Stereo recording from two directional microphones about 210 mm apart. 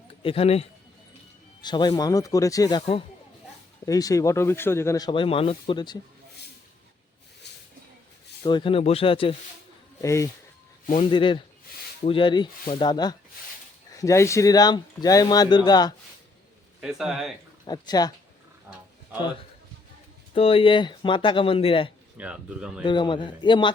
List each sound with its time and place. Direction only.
0.2 s speech: 25° left (ahead or behind)
3.8 s speech: 15° left (ahead or behind)
8.4 s speech: 25° left (ahead or behind)
10.0 s speech: 15° left (ahead or behind)
16.8 s speech: 5° right (ahead or behind)
17.7 s speech: 20° left (ahead or behind)
20.3 s speech: 25° left (ahead or behind)
22.2 s speech: 5° right (ahead or behind)
22.8 s speech: 20° left (ahead or behind)